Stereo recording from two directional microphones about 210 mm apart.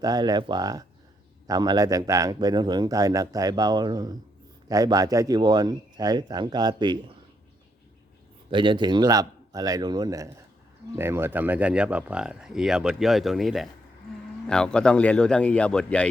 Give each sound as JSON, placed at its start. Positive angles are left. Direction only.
{"t": 0.0, "sound": "a man's voice", "side_deg": -20}
{"t": 8.4, "sound": "speech", "side_deg": -25}